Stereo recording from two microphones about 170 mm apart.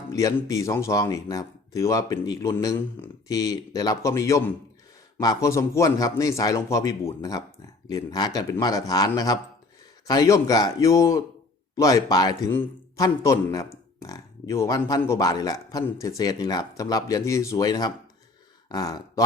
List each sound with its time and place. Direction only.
0.1 s speech: 20° left (ahead or behind)